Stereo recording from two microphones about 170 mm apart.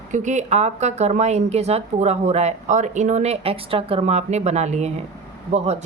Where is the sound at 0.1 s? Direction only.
45° right (ahead or behind).